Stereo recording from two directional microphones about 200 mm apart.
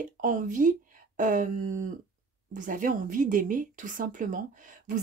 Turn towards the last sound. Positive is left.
turn(degrees=-40)  # may be behind; listen again after turning